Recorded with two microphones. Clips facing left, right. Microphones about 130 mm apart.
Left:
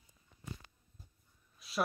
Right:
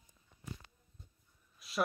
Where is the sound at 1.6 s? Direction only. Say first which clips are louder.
Even; centre (ahead or behind).